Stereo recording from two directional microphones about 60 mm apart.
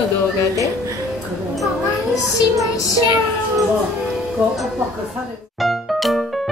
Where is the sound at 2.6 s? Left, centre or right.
Left.